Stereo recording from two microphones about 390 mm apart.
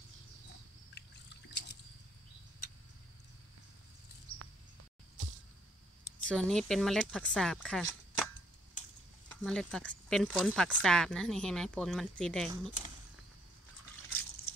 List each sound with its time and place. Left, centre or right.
0.9 s bird: left
6.2 s speech: centre
9.3 s speech: centre